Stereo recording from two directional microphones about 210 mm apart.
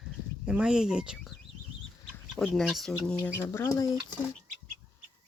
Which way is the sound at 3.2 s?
10° left (ahead or behind).